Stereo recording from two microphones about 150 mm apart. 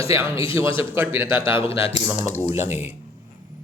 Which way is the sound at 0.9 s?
15° right (ahead or behind).